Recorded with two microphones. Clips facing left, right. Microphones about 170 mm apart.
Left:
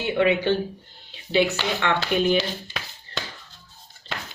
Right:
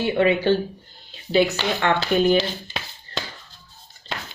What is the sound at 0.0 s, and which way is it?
Speech, 35° right (ahead or behind).